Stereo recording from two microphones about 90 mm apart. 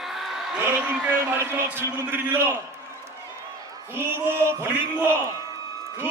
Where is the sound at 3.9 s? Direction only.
25° right (ahead or behind).